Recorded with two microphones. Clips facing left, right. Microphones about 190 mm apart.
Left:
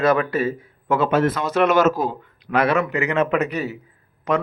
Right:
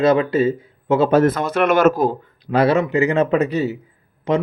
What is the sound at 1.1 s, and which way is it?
Speech, 45° right (ahead or behind).